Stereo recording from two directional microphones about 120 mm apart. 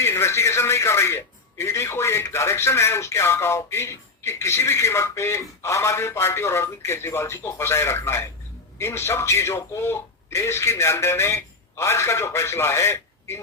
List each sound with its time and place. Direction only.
0.0 s speech: 20° left (ahead or behind)